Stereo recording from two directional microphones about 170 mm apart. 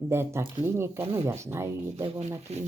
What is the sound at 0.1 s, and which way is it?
Speech, 15° right (ahead or behind).